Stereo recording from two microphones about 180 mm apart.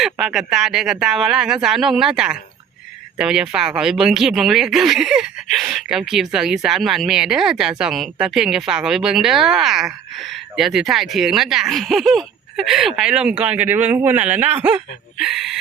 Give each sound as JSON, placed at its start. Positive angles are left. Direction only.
{"t": 0.0, "sound": "speech", "side_deg": 0}